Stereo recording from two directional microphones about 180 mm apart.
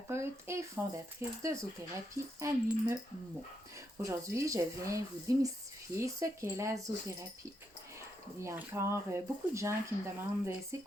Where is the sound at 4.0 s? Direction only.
15° right (ahead or behind).